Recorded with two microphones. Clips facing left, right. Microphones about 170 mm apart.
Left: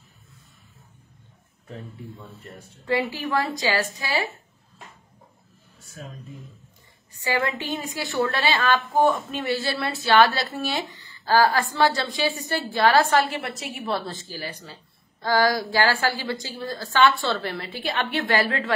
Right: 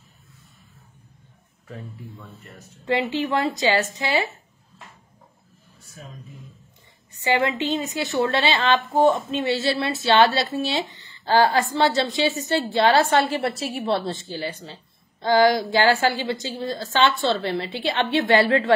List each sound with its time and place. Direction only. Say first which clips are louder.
2.8 s a woman's voice: right 2 dB; 20° right (ahead or behind)
7.2 s a woman's voice: right 4 dB; 25° right (ahead or behind)